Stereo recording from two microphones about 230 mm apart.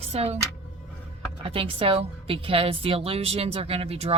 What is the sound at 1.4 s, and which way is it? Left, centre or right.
A woman's voice, right.